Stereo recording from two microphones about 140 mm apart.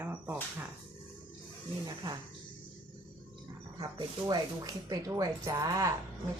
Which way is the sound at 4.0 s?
30° right (ahead or behind).